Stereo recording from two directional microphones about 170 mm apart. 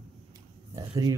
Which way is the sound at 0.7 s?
20° right (ahead or behind).